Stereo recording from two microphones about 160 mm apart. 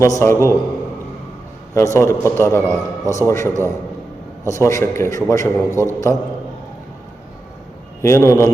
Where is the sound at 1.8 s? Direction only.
15° left (ahead or behind).